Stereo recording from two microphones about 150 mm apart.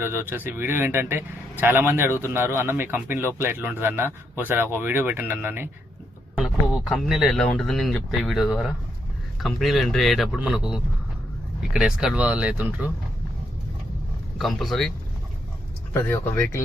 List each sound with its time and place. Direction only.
0.0 s a man's voice: 15° right (ahead or behind)
6.3 s a man's voice: centre (ahead or behind)
14.3 s speech: centre (ahead or behind)
15.9 s speech: 15° left (ahead or behind)